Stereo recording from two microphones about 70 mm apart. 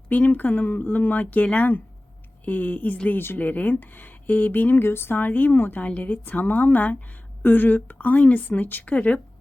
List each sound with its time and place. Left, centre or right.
0.1 s speech: left